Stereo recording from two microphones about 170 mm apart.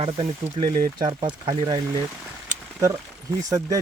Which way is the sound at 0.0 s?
30° right (ahead or behind).